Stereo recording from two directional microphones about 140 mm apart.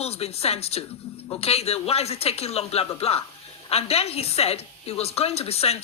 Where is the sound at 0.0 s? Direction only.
45° left (ahead or behind).